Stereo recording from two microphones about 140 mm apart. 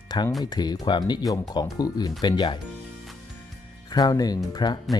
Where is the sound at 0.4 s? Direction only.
30° left (ahead or behind).